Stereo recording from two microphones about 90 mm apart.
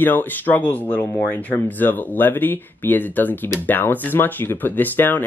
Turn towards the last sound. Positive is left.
turn(degrees=20)  # may be behind; listen again after turning